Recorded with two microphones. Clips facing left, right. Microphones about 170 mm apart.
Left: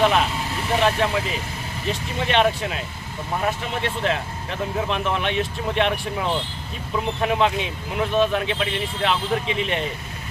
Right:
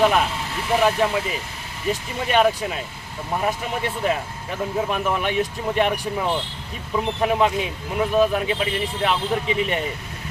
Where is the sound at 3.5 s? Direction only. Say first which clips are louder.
Even; 10° right (ahead or behind).